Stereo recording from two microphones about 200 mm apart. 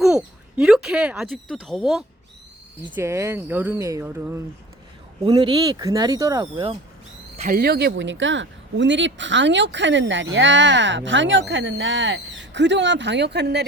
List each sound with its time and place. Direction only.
0.0 s speech: 5° right (ahead or behind)
2.9 s speech: 15° right (ahead or behind)
7.4 s speech: 50° right (ahead or behind)